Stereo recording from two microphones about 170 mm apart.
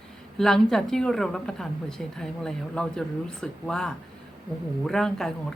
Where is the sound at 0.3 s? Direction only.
Centre (ahead or behind).